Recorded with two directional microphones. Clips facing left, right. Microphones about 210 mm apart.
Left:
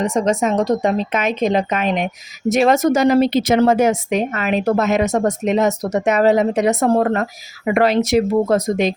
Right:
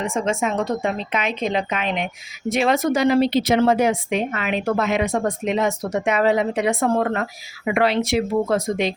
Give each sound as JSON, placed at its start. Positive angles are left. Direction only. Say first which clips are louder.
{"t": 0.0, "sound": "speech", "louder": "left 5 dB", "side_deg": 40}